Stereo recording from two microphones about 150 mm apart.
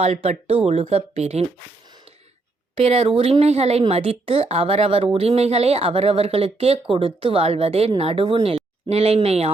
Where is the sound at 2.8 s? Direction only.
45° right (ahead or behind).